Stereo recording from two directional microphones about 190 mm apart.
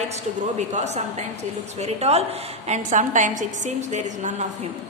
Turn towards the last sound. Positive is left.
turn(degrees=-40)  # may be behind; listen again after turning